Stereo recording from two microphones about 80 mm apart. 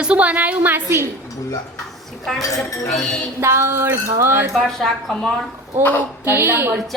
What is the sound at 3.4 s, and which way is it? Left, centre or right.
Music, right.